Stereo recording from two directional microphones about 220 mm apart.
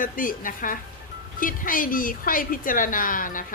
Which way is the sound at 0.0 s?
40° left (ahead or behind).